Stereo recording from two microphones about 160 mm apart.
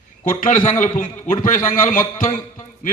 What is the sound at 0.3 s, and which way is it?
A man's voice, 55° left (ahead or behind).